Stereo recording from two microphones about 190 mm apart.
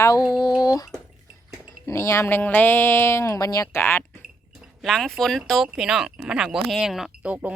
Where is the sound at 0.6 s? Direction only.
20° left (ahead or behind).